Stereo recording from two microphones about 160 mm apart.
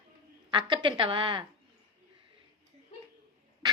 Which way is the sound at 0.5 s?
30° right (ahead or behind).